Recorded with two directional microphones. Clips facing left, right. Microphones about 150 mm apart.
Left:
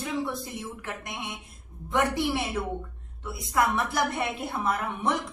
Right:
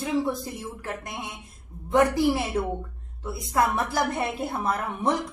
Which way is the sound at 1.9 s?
40° right (ahead or behind).